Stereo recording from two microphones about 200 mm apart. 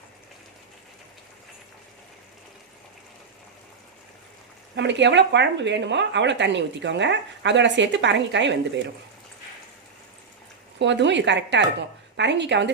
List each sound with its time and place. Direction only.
4.8 s a woman's voice: 60° right (ahead or behind)
10.8 s a woman's voice: 60° right (ahead or behind)